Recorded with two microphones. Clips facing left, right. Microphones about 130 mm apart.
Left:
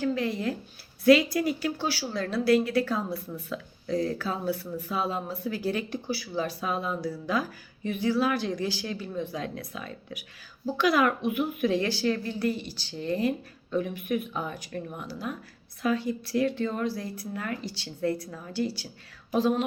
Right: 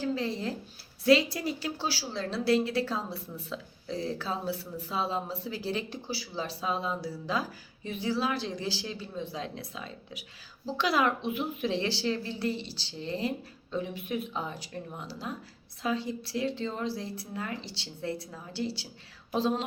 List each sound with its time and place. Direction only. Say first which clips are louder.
0.0 s speech: left 3 dB; 30° right (ahead or behind)
7.9 s speech: left 5 dB; 30° right (ahead or behind)